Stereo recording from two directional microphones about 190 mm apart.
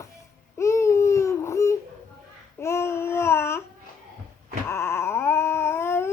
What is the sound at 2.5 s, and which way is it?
Babbling, 15° left (ahead or behind).